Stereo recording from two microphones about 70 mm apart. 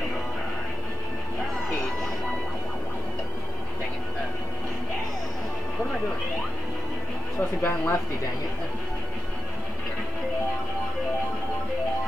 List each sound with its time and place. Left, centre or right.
7.3 s speech: left